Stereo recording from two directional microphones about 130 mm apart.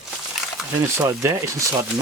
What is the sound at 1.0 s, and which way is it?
Speech, 20° right (ahead or behind).